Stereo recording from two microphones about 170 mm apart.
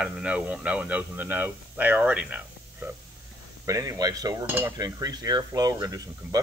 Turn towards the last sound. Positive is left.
turn(degrees=-20)  # may be behind; listen again after turning